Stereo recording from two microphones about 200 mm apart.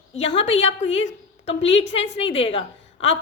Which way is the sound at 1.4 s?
30° left (ahead or behind).